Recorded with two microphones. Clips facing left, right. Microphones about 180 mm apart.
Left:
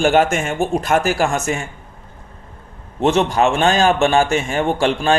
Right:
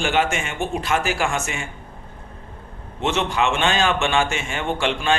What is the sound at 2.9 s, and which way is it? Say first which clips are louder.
A man's voice: left 6 dB; 40° left (ahead or behind).